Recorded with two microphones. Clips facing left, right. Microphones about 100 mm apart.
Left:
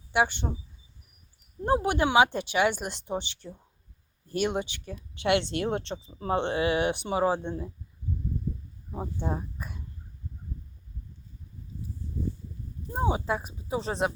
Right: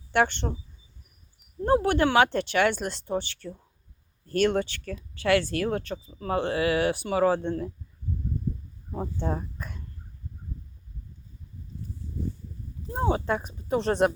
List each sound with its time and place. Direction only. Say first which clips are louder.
0.1 s speech: right 2 dB; 10° left (ahead or behind)
1.6 s speech: right 3 dB; 15° left (ahead or behind)
8.9 s speech: right 2 dB; 10° left (ahead or behind)
13.0 s speech: right 2 dB; 10° left (ahead or behind)